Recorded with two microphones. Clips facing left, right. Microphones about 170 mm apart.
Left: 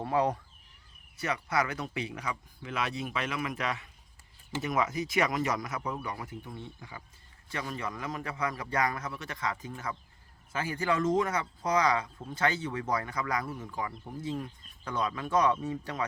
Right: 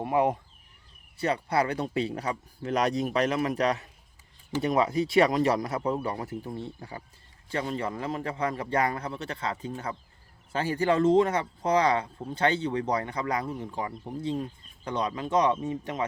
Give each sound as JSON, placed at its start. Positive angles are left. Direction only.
{"t": 0.0, "sound": "speech", "side_deg": -20}
{"t": 1.2, "sound": "speech", "side_deg": -30}